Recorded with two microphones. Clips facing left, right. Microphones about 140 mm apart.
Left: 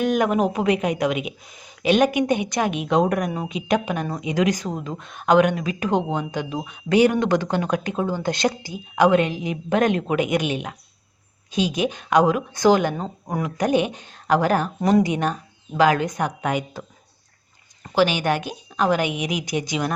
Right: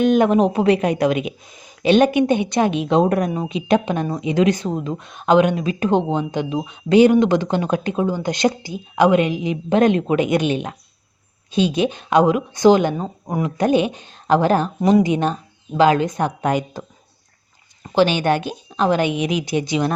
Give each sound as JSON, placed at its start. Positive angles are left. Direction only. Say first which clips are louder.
{"t": 0.0, "sound": "speech", "louder": "right 5 dB", "side_deg": -25}
{"t": 1.5, "sound": "speech", "louder": "right 3 dB", "side_deg": -20}
{"t": 3.3, "sound": "speech", "louder": "right 4 dB", "side_deg": -15}
{"t": 11.5, "sound": "speech", "louder": "right 4 dB", "side_deg": -30}
{"t": 17.9, "sound": "speech", "louder": "right 3 dB", "side_deg": -25}